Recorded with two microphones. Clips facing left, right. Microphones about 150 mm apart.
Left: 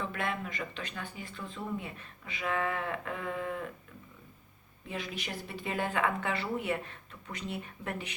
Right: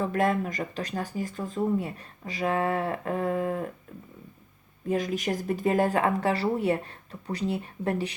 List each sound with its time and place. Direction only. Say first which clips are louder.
0.0 s speech: right 10 dB; 40° right (ahead or behind)
4.9 s speech: right 12 dB; 45° right (ahead or behind)